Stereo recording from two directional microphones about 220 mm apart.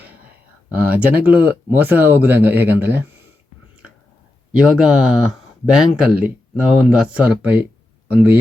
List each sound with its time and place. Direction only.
0.9 s speech: 5° right (ahead or behind)
4.5 s speech: 5° right (ahead or behind)